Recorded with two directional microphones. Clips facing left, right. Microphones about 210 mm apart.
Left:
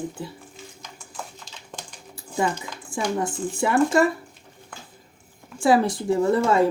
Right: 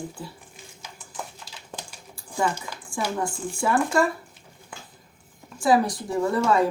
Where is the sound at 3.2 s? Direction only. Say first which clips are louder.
Left 2 dB; 20° left (ahead or behind).